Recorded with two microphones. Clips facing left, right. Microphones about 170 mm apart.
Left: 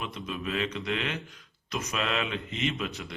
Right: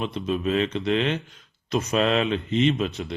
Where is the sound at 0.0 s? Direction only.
30° right (ahead or behind).